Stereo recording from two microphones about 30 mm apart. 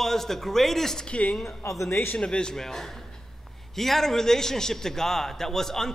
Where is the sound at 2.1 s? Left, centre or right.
Left.